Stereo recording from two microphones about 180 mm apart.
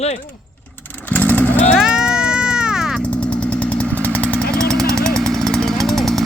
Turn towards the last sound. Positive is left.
turn(degrees=0)  # may be behind; listen again after turning